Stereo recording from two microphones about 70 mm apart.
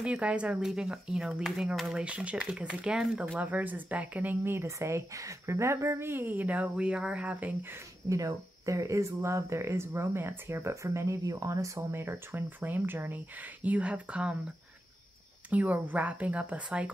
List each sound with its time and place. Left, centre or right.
0.0 s speech: centre
3.3 s speech: right
8.1 s speech: right
11.9 s speech: right; by 14.3 s centre
15.5 s speech: right